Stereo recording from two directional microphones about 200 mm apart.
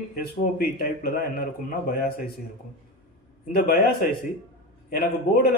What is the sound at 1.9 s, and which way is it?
Speech, 45° left (ahead or behind).